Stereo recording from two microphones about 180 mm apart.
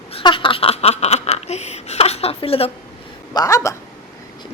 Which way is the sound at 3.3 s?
15° left (ahead or behind).